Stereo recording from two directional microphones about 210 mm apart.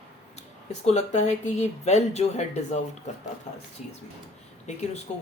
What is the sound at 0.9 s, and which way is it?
Speech, 30° left (ahead or behind).